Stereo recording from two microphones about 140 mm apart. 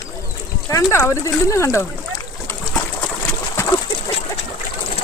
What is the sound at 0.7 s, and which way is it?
Speech, 20° left (ahead or behind).